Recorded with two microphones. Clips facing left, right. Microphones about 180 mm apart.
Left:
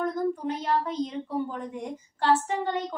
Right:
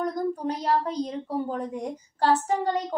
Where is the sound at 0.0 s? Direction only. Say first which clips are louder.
Even; 40° right (ahead or behind).